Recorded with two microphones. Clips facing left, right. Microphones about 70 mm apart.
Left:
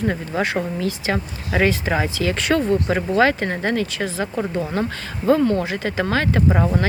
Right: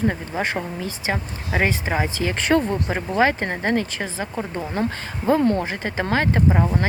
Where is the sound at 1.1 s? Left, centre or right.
Right.